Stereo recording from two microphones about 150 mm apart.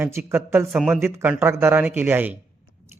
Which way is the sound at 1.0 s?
15° right (ahead or behind).